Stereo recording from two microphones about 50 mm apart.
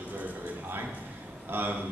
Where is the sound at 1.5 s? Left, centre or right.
Right.